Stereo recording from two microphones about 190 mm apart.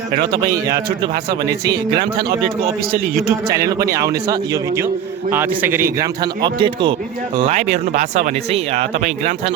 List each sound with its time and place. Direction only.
0.4 s a man's voice: 20° right (ahead or behind)
2.9 s a man's voice: 55° right (ahead or behind)
3.6 s a man's voice: 20° right (ahead or behind)
7.4 s speech: 35° right (ahead or behind)